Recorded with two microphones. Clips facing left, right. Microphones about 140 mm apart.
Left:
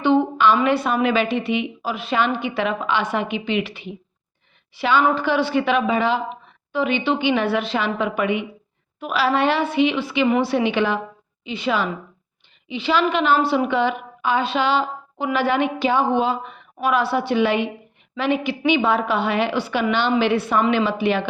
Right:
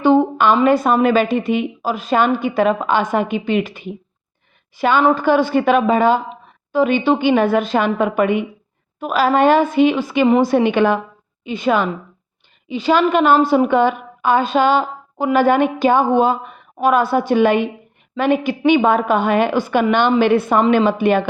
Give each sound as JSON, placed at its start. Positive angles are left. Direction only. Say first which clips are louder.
{"t": 0.0, "sound": "a woman's voice", "louder": "right 3 dB", "side_deg": -45}